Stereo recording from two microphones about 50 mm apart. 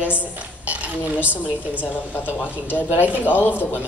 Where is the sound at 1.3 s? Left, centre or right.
Left.